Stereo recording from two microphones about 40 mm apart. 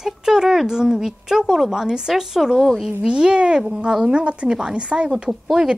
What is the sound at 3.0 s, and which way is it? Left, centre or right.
Speech, right.